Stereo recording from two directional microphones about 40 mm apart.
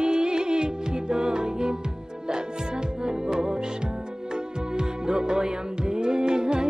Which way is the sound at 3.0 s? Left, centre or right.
Centre.